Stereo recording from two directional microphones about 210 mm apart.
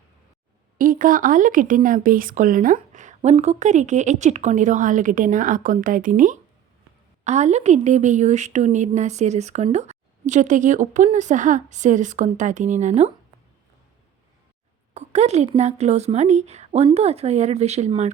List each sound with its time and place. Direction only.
0.8 s a woman's voice: 40° right (ahead or behind)
14.9 s a woman's voice: 30° right (ahead or behind)